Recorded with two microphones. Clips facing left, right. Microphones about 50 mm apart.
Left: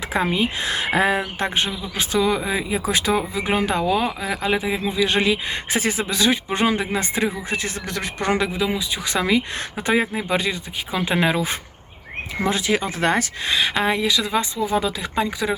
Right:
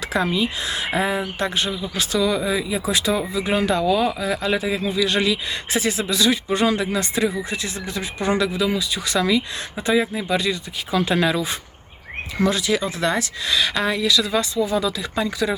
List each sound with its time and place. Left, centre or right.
0.1 s speech: left
0.3 s speech: left
1.4 s speech: left
8.3 s speech: left
13.6 s speech: left